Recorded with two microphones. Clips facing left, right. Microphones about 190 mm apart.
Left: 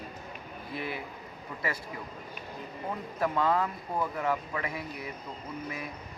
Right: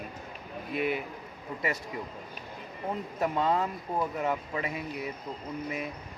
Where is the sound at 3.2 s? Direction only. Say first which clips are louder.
Even; 20° right (ahead or behind).